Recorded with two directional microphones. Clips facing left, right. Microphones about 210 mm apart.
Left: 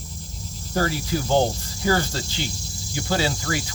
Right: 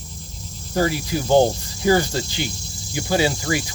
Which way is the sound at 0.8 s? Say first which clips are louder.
Right 3 dB; 15° right (ahead or behind).